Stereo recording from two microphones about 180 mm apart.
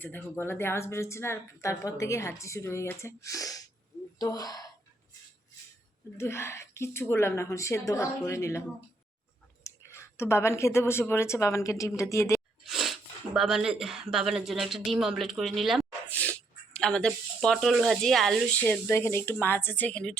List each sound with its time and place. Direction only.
0.0 s speech: 10° left (ahead or behind)
6.1 s speech: 15° left (ahead or behind)
9.6 s speech: 15° left (ahead or behind)
12.6 s speech: centre (ahead or behind)